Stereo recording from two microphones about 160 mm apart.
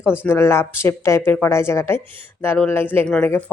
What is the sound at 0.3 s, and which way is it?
A woman's voice, 15° left (ahead or behind).